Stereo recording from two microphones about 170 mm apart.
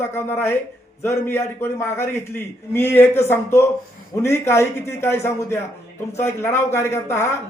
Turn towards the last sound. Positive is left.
turn(degrees=15)  # may be behind; listen again after turning